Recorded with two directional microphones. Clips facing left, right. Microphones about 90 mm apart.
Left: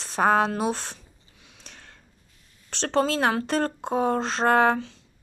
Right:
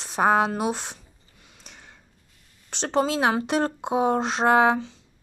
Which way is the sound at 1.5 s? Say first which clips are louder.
Even; 5° right (ahead or behind).